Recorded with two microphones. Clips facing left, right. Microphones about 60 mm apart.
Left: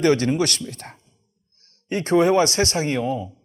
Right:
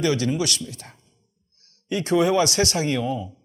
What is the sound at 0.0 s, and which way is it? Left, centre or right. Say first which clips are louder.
Speech: left 4 dB; left.